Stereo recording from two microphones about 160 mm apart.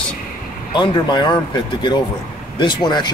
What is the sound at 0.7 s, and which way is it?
Speech, 30° left (ahead or behind).